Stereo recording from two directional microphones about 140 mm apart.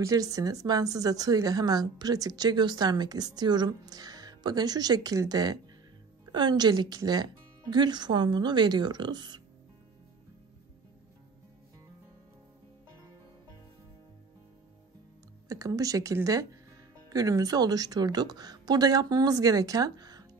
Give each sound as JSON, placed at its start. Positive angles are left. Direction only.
{"t": 0.0, "sound": "speech", "side_deg": -25}
{"t": 15.4, "sound": "speech", "side_deg": -25}